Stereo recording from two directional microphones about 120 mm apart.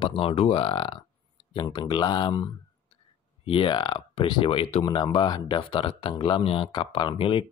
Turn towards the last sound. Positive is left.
turn(degrees=45)  # may be behind; listen again after turning